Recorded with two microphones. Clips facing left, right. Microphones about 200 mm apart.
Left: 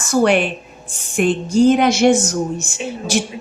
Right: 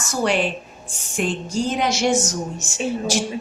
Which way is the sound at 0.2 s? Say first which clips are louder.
Left 6 dB; 60° left (ahead or behind).